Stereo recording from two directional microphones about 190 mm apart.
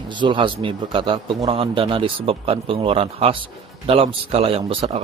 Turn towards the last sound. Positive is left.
turn(degrees=-30)  # may be behind; listen again after turning